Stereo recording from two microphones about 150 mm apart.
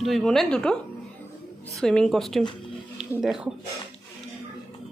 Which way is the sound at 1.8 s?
5° left (ahead or behind).